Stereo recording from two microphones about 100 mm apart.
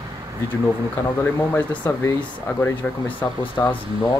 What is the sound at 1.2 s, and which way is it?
Speech, 20° left (ahead or behind).